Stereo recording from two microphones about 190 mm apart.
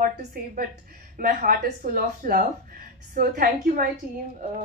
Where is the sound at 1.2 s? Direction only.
50° right (ahead or behind).